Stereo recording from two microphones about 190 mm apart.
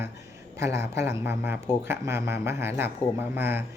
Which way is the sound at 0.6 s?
15° right (ahead or behind).